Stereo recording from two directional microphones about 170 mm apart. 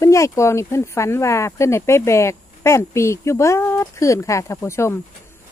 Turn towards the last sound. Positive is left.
turn(degrees=15)  # may be behind; listen again after turning